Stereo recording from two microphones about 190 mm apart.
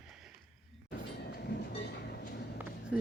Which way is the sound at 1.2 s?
55° left (ahead or behind).